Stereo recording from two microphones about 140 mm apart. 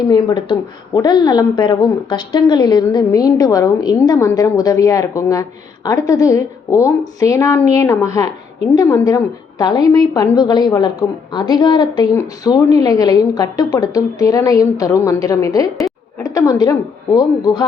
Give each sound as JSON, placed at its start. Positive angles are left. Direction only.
{"t": 0.0, "sound": "a woman's voice", "side_deg": 30}